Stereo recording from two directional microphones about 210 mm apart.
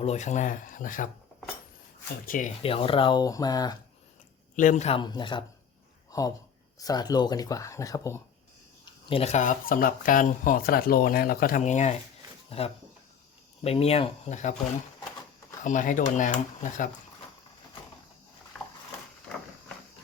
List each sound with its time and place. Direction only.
0.0 s speech: 35° left (ahead or behind)
2.2 s speech: 40° left (ahead or behind)
2.6 s speech: 25° left (ahead or behind)
4.5 s speech: 35° left (ahead or behind); by 8.2 s 15° left (ahead or behind)
9.0 s speech: 30° left (ahead or behind)
15.6 s speech: 40° left (ahead or behind)